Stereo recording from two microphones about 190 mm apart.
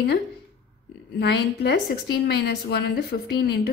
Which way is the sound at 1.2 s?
60° left (ahead or behind).